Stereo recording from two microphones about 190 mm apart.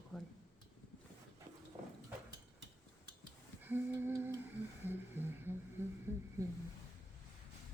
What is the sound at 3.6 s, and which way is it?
Humming, 10° right (ahead or behind).